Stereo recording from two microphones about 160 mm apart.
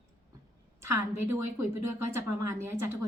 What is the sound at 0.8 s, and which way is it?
A woman's voice, 15° right (ahead or behind).